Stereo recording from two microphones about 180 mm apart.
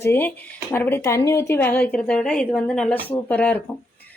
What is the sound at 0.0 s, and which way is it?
A woman's voice, 10° left (ahead or behind).